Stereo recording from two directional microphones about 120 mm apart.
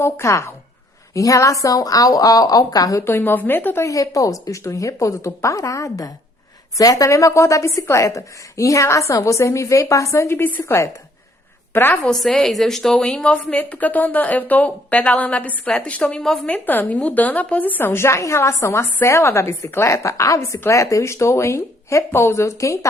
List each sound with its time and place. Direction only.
0.0 s a woman's voice: 20° left (ahead or behind)
3.0 s a woman's voice: 20° left (ahead or behind)
12.0 s a woman's voice: 5° left (ahead or behind); by 22.9 s 25° left (ahead or behind)